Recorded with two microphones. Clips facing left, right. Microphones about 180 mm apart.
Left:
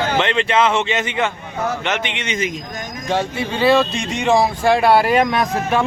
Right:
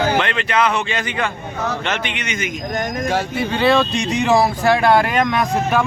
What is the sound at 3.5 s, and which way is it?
Speech, centre (ahead or behind).